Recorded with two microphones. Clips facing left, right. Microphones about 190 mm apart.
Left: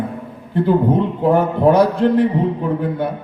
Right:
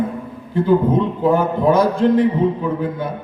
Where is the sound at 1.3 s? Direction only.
65° left (ahead or behind).